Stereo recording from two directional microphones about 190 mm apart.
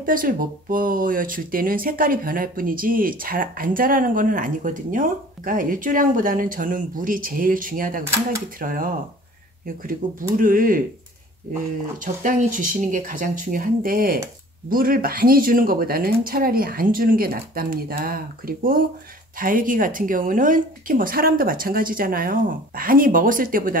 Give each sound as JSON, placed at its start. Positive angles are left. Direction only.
{"t": 0.0, "sound": "speech", "side_deg": -45}
{"t": 12.0, "sound": "speech", "side_deg": -45}